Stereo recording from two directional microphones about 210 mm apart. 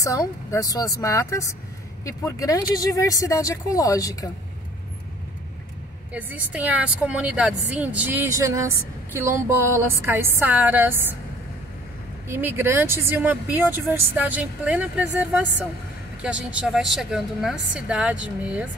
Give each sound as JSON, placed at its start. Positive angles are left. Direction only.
{"t": 0.0, "sound": "speech", "side_deg": 15}
{"t": 6.1, "sound": "a woman's voice", "side_deg": -5}
{"t": 12.3, "sound": "a woman's voice", "side_deg": -10}